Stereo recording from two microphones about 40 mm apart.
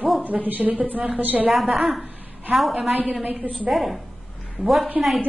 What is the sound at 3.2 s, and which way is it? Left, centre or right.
Speech, right.